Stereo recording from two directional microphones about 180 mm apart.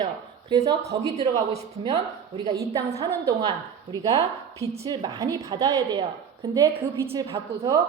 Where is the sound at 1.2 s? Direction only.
35° right (ahead or behind).